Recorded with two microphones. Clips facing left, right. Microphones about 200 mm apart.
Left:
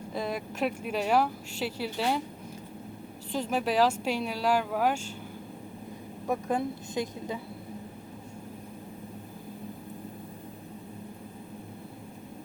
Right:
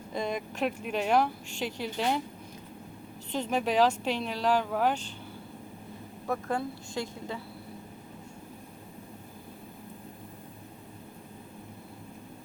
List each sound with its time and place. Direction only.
0.1 s speech: 5° left (ahead or behind)
3.3 s speech: 5° left (ahead or behind)
6.2 s speech: 15° left (ahead or behind)